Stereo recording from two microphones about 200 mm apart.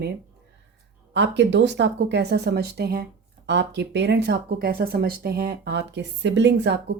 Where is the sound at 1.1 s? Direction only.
65° right (ahead or behind).